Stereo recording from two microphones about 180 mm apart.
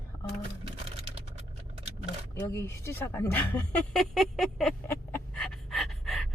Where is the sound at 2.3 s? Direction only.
15° left (ahead or behind).